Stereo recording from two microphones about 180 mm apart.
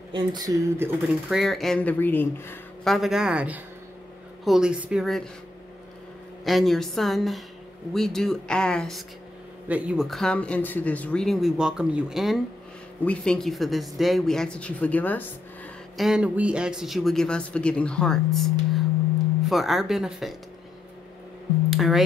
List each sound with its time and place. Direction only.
0.1 s speech: 25° right (ahead or behind)
1.3 s speech: centre (ahead or behind)
2.8 s a man's voice: centre (ahead or behind)
6.4 s a man's voice: centre (ahead or behind)
9.7 s a man's voice: 5° right (ahead or behind); by 15.2 s 10° left (ahead or behind)
16.0 s a man's voice: 5° right (ahead or behind)
21.6 s speech: centre (ahead or behind)